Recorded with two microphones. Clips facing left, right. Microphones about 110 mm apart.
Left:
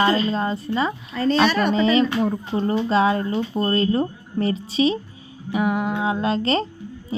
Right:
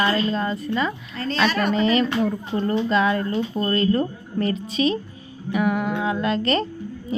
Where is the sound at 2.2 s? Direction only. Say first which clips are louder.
Left 1 dB; 20° left (ahead or behind).